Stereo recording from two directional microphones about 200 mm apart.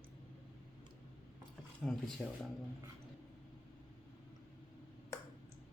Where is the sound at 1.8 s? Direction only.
Centre (ahead or behind).